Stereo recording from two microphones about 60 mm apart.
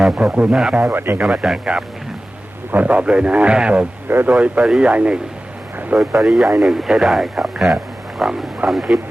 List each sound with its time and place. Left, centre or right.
0.2 s speech: centre
0.5 s speech: centre
0.9 s speech: right
1.2 s a man's voice: centre
6.1 s speech: centre